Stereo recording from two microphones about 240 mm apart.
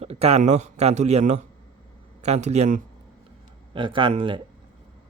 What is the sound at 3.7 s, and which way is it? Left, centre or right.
Speech, right.